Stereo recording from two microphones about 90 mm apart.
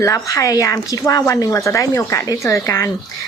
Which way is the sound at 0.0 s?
35° left (ahead or behind).